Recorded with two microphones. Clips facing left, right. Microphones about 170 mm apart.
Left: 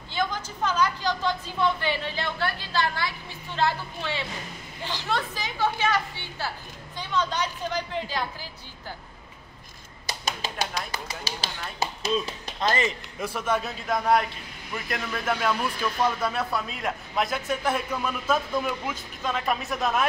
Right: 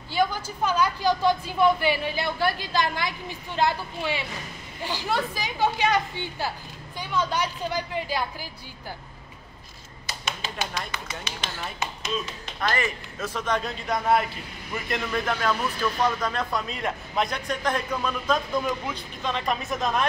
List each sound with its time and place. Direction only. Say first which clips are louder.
0.1 s a woman's voice: right 4 dB; 10° right (ahead or behind)
10.0 s tap: left 2 dB; 35° left (ahead or behind)
10.9 s speech: left 1 dB; 35° left (ahead or behind)
12.5 s speech: left 1 dB; 20° left (ahead or behind)
13.3 s speech: even; 10° left (ahead or behind)